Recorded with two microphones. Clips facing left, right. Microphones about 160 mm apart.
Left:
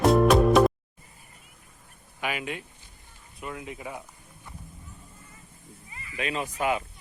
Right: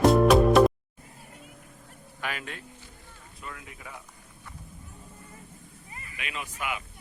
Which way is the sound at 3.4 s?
20° left (ahead or behind).